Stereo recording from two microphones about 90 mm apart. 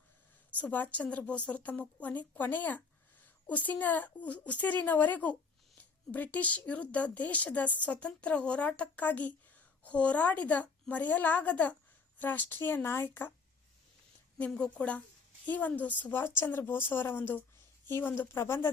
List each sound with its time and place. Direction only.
0.5 s a woman's voice: 15° left (ahead or behind)
14.3 s a woman's voice: 10° left (ahead or behind); by 18.7 s 25° left (ahead or behind)